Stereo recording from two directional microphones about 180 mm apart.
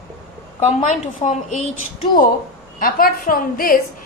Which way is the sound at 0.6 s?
45° left (ahead or behind).